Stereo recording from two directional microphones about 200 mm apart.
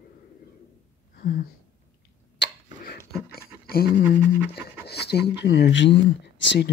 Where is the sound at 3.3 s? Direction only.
50° left (ahead or behind).